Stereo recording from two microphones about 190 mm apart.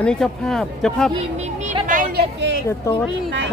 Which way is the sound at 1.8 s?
45° right (ahead or behind).